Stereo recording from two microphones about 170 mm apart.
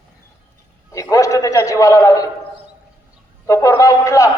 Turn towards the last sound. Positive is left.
turn(degrees=20)  # may be behind; listen again after turning